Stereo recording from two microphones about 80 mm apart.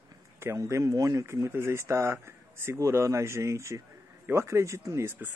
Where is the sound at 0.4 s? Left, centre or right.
Right.